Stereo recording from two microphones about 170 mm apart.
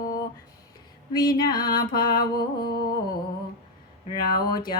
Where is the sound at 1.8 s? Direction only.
60° left (ahead or behind).